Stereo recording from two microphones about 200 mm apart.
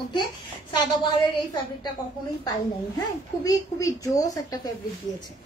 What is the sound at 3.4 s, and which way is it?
Speech, 15° left (ahead or behind).